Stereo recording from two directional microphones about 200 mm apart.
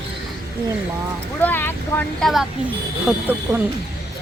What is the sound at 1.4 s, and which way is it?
Speech, 10° left (ahead or behind).